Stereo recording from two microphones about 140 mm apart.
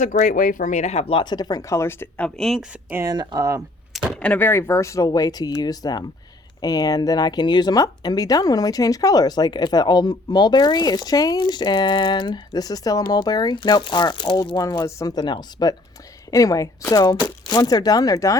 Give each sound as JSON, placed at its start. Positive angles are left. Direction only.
{"t": 0.0, "sound": "speech", "side_deg": 65}
{"t": 2.9, "sound": "speech", "side_deg": -25}
{"t": 4.2, "sound": "speech", "side_deg": 10}